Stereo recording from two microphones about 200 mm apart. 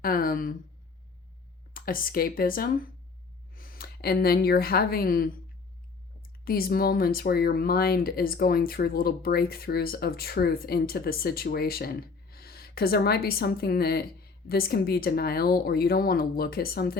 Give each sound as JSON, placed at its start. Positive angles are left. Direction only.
{"t": 0.0, "sound": "speech", "side_deg": 45}
{"t": 1.7, "sound": "speech", "side_deg": 45}
{"t": 6.4, "sound": "speech", "side_deg": 50}